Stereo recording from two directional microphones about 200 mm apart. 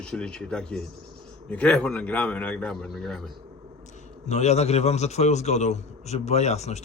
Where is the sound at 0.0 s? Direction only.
5° left (ahead or behind).